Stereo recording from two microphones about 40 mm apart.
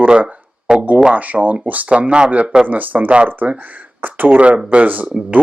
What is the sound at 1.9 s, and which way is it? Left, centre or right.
Speech, right.